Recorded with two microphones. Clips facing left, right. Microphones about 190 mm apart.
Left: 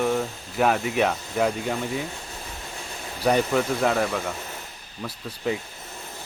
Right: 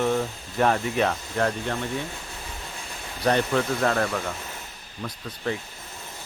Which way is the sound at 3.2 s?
5° left (ahead or behind).